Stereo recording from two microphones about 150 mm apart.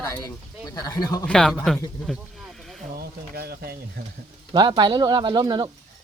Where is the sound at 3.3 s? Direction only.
90° right.